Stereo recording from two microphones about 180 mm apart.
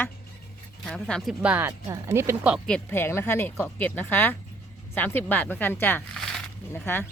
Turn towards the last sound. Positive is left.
turn(degrees=10)  # may be behind; listen again after turning